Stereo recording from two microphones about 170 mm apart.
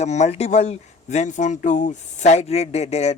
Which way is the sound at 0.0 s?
40° left (ahead or behind).